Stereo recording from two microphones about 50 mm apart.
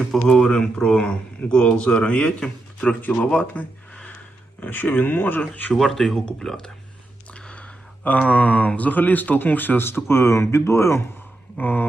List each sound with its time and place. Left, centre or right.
0.3 s a man's voice: centre
3.0 s speech: left
3.2 s speech: left
5.7 s speech: centre
6.1 s speech: centre
7.3 s a sound: left
8.3 s speech: left
11.5 s speech: left